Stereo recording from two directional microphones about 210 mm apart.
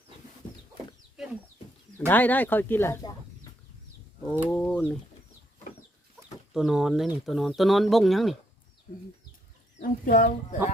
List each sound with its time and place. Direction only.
1.2 s chicken: centre (ahead or behind)
2.0 s speech: 10° left (ahead or behind)
4.3 s speech: 5° left (ahead or behind)
6.5 s speech: centre (ahead or behind)
10.1 s speech: 40° left (ahead or behind)